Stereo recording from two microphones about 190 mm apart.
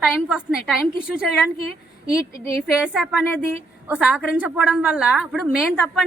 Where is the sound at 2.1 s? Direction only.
15° left (ahead or behind).